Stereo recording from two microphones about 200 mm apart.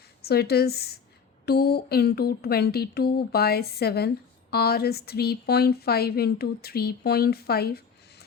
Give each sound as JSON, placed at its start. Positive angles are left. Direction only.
{"t": 0.2, "sound": "speech", "side_deg": 55}